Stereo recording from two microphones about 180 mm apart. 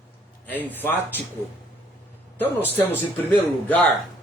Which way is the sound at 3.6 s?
10° left (ahead or behind).